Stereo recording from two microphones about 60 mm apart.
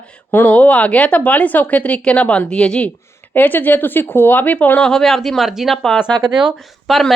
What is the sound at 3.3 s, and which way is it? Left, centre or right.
Speech, left.